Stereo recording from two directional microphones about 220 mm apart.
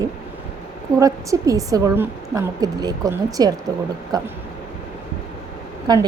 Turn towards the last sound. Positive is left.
turn(degrees=-20)  # may be behind; listen again after turning